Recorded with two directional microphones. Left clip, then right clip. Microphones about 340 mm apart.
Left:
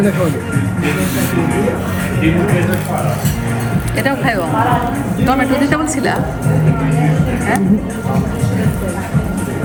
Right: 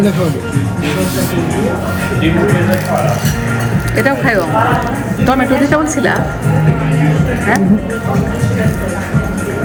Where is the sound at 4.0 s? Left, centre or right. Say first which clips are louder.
Right 3 dB; left.